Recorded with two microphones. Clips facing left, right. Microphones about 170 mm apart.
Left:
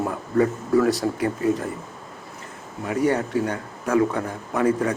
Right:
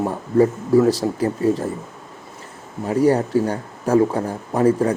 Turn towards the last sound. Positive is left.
turn(degrees=-35)  # may be behind; listen again after turning